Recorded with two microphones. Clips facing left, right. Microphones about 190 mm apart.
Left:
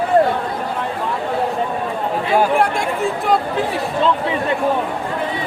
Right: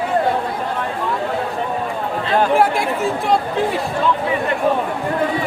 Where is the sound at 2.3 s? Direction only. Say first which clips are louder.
Left 1 dB; 10° left (ahead or behind).